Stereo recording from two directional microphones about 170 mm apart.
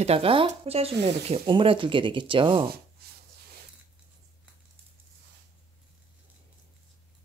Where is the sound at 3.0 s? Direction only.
65° right (ahead or behind).